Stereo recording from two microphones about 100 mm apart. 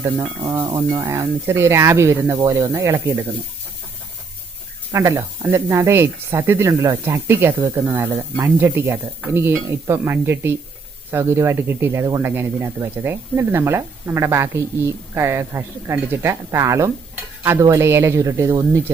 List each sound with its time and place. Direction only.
0.6 s speech: 45° right (ahead or behind)
0.9 s speech: 25° right (ahead or behind)
4.9 s speech: 30° right (ahead or behind)
7.6 s speech: 35° right (ahead or behind)
7.9 s speech: 25° right (ahead or behind)